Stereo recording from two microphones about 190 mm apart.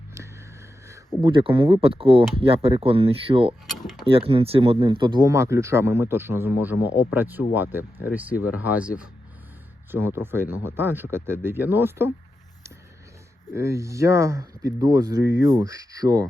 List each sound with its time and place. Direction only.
1.2 s speech: 25° right (ahead or behind)
3.7 s mechanisms: centre (ahead or behind)
4.0 s speech: 30° right (ahead or behind); by 8.9 s 10° right (ahead or behind)
9.9 s speech: 10° right (ahead or behind)
13.5 s speech: 15° right (ahead or behind)